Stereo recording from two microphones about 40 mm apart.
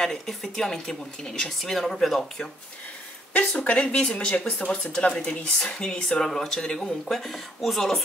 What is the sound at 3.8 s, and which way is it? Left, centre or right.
Speech, left.